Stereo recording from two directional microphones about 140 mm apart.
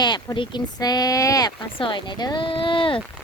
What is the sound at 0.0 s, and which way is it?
Speech, 30° left (ahead or behind).